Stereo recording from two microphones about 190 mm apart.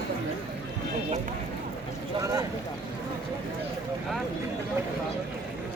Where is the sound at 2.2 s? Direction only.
15° right (ahead or behind).